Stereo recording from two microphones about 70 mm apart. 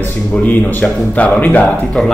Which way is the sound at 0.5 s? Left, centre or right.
Left.